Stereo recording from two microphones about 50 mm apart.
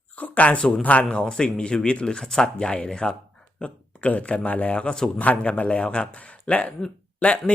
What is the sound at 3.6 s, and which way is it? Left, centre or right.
A man's voice, left.